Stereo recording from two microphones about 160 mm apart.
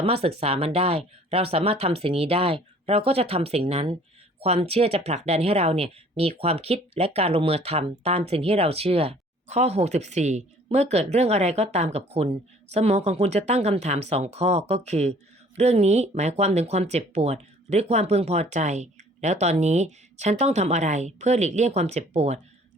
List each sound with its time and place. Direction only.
0.0 s speech: 40° right (ahead or behind)